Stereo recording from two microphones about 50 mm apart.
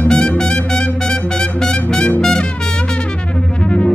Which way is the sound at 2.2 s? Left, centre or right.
Centre.